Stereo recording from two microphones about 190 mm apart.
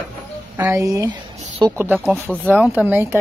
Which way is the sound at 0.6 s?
15° right (ahead or behind).